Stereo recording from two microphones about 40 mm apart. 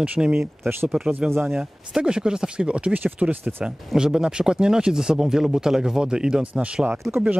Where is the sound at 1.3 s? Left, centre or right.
Right.